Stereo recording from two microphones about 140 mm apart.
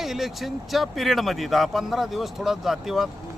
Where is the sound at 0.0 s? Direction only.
Centre (ahead or behind).